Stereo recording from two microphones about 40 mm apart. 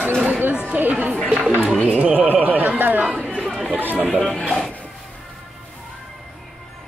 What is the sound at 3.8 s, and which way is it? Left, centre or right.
Speech, right.